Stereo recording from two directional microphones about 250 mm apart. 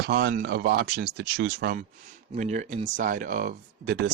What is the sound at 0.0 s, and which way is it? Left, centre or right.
Speech, right.